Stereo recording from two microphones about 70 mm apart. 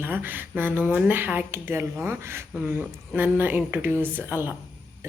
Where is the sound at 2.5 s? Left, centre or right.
Centre.